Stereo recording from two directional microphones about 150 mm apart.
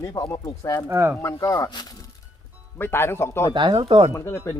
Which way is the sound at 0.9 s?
15° right (ahead or behind).